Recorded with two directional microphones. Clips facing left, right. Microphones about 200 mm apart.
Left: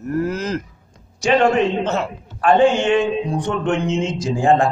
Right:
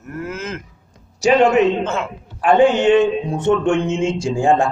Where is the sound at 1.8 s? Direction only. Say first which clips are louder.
Left 1 dB; 35° left (ahead or behind).